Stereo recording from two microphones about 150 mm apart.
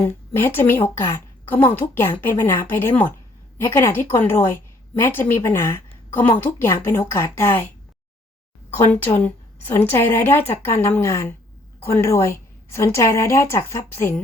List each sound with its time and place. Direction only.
0.3 s a woman's voice: 15° left (ahead or behind)
9.0 s a woman's voice: 15° left (ahead or behind)